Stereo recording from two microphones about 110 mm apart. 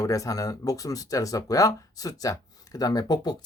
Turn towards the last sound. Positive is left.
turn(degrees=35)  # may be behind; listen again after turning